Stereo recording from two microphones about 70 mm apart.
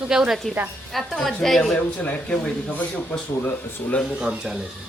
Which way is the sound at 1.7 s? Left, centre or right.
Centre.